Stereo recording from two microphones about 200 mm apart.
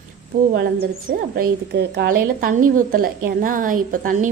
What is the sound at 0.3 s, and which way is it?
A woman's voice, 45° right (ahead or behind).